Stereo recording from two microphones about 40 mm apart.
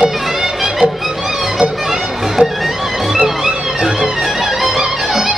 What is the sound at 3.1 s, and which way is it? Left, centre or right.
Music, centre.